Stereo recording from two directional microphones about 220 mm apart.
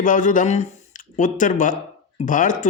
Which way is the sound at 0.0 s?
35° left (ahead or behind).